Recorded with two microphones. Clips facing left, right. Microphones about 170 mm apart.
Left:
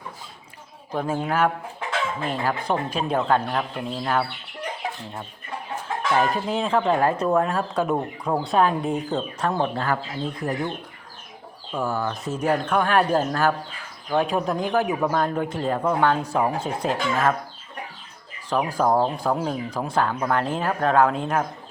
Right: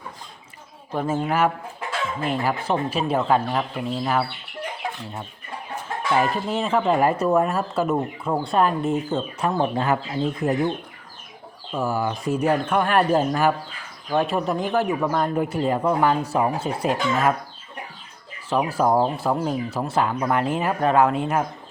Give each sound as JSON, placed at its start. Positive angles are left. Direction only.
{"t": 0.9, "sound": "speech", "side_deg": -5}
{"t": 6.1, "sound": "speech", "side_deg": 0}
{"t": 9.8, "sound": "speech", "side_deg": -20}
{"t": 11.7, "sound": "speech", "side_deg": -10}
{"t": 18.4, "sound": "speech", "side_deg": -5}